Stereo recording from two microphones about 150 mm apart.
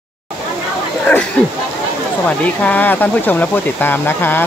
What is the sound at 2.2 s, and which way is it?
Speech, 10° left (ahead or behind).